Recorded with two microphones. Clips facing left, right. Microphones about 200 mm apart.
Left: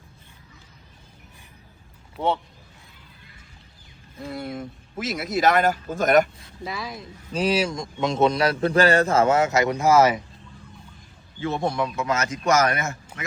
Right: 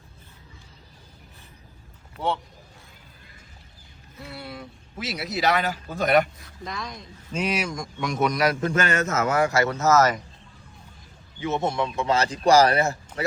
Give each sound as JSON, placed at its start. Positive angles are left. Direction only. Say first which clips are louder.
{"t": 4.3, "sound": "speech", "louder": "left 7 dB", "side_deg": 45}
{"t": 6.7, "sound": "speech", "louder": "left 2 dB", "side_deg": 5}
{"t": 7.3, "sound": "a man's voice", "louder": "left 4 dB", "side_deg": 30}
{"t": 11.3, "sound": "a man's voice", "louder": "even", "side_deg": -20}